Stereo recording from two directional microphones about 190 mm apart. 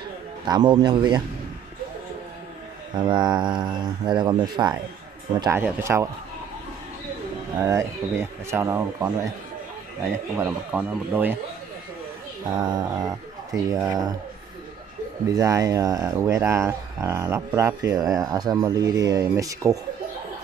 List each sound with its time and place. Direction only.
0.5 s speech: 25° right (ahead or behind)
2.9 s speech: 25° right (ahead or behind)
5.4 s speech: 15° right (ahead or behind)
7.6 s speech: 15° right (ahead or behind)
10.3 s speech: 10° right (ahead or behind)
12.6 s speech: 20° right (ahead or behind)
15.2 s speech: 15° right (ahead or behind)